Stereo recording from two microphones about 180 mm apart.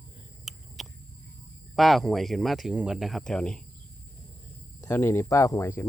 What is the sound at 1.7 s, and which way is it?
Speech, centre (ahead or behind).